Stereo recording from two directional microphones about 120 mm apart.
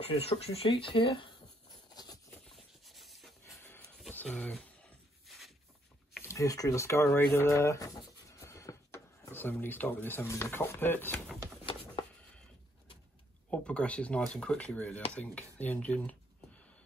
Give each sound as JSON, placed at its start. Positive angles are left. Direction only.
{"t": 0.0, "sound": "speech", "side_deg": 55}
{"t": 2.5, "sound": "a sound", "side_deg": 0}
{"t": 4.1, "sound": "speech", "side_deg": 10}
{"t": 6.2, "sound": "speech", "side_deg": 25}
{"t": 11.6, "sound": "a sound", "side_deg": 40}
{"t": 13.5, "sound": "speech", "side_deg": 10}